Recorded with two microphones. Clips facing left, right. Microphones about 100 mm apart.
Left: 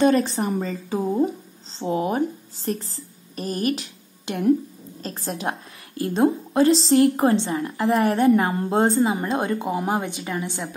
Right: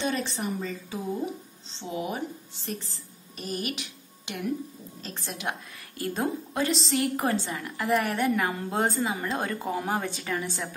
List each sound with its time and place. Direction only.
0.0 s a woman's voice: 40° left (ahead or behind); by 10.7 s 20° left (ahead or behind)